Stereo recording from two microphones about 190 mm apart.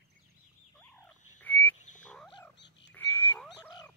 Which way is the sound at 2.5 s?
65° left (ahead or behind).